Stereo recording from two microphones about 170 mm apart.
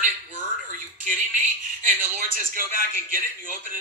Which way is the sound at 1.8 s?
55° right (ahead or behind).